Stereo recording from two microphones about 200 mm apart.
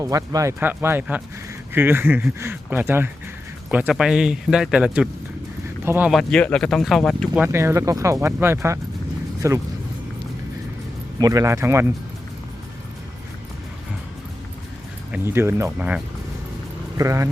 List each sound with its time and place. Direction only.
0.0 s speech: 15° right (ahead or behind)
6.1 s speech: 5° left (ahead or behind)
7.4 s speech: 15° right (ahead or behind)
11.2 s speech: 15° right (ahead or behind)
15.1 s speech: 10° right (ahead or behind)
17.0 s speech: 15° right (ahead or behind)